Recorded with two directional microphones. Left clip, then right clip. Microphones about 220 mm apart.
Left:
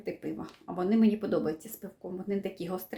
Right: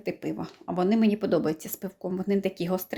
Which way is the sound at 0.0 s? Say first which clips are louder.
Right 5 dB; 35° right (ahead or behind).